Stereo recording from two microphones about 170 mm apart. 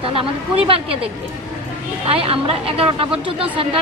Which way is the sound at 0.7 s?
35° right (ahead or behind).